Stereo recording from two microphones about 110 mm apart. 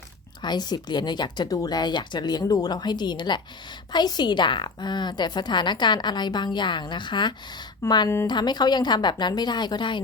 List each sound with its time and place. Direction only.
0.4 s a woman's voice: 40° left (ahead or behind)